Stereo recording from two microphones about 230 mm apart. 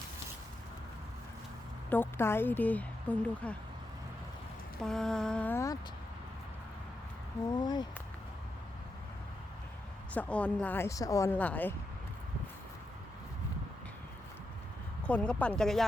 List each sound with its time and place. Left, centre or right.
1.9 s speech: centre
4.8 s mantra: centre
7.5 s speech: centre
10.2 s speech: centre
15.0 s mantra: centre